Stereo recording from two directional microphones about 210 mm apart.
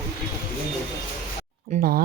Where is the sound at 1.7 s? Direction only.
35° right (ahead or behind).